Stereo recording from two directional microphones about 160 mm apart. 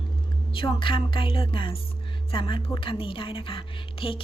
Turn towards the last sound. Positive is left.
turn(degrees=35)  # may be behind; listen again after turning